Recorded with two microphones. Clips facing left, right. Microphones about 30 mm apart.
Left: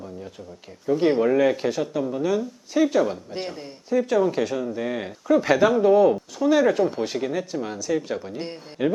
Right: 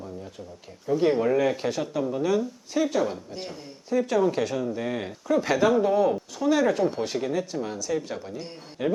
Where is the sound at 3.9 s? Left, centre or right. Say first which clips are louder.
Left 2 dB; centre.